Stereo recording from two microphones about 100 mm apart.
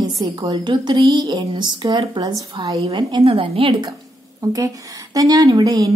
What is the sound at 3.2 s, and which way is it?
Speech, 70° right (ahead or behind).